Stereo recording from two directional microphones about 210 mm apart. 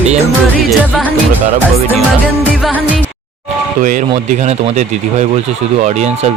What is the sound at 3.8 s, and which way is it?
Speech, 35° right (ahead or behind).